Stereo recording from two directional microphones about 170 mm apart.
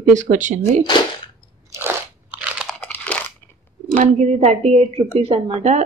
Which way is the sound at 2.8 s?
10° left (ahead or behind).